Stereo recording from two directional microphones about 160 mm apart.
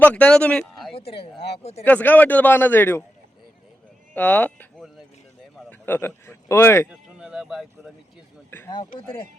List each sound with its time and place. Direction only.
0.0 s speech: 10° left (ahead or behind)
0.9 s speech: 35° left (ahead or behind)
1.8 s speech: 10° left (ahead or behind)
4.1 s speech: 10° left (ahead or behind)
6.9 s speech: 5° right (ahead or behind)
8.4 s speech: 15° left (ahead or behind)